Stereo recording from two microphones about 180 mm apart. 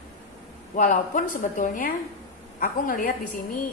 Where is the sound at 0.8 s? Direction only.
45° left (ahead or behind).